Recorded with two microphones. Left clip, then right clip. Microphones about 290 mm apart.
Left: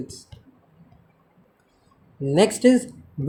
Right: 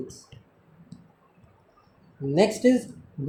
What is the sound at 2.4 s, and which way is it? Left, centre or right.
Speech, left.